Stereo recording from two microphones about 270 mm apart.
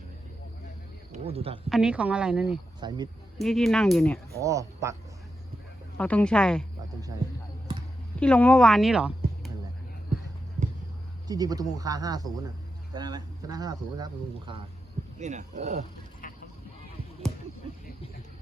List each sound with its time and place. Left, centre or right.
1.1 s speech: right
1.7 s speech: centre
2.8 s speech: centre
3.3 s speech: centre
4.3 s speech: centre
6.0 s speech: centre
8.2 s speech: centre
11.3 s speech: centre
15.2 s speech: right